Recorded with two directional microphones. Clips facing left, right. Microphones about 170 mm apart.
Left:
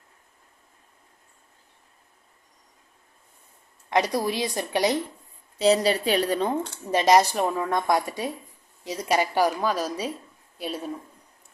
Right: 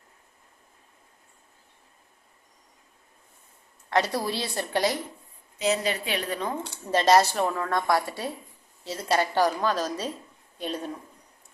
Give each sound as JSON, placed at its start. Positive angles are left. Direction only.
{"t": 3.8, "sound": "a woman's voice", "side_deg": 15}
{"t": 5.5, "sound": "a woman's voice", "side_deg": 35}
{"t": 6.9, "sound": "a woman's voice", "side_deg": 15}